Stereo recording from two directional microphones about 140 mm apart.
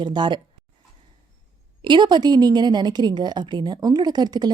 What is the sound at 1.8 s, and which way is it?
Speech, 35° right (ahead or behind).